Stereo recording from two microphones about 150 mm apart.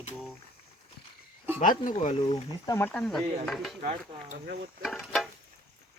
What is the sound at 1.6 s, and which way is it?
Speech, 60° left (ahead or behind).